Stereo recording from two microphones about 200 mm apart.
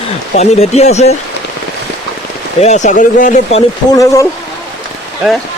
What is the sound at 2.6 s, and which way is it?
Speech, 35° left (ahead or behind).